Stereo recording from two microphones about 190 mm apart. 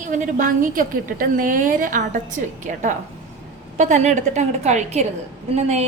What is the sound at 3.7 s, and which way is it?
A woman's voice, 40° right (ahead or behind).